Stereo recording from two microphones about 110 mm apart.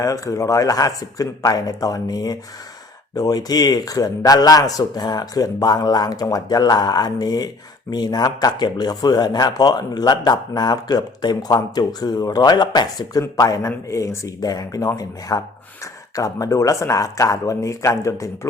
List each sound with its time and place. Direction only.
0.0 s a man's voice: 30° left (ahead or behind)